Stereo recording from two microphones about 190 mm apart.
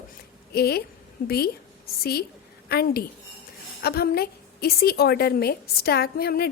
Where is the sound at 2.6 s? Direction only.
55° left (ahead or behind).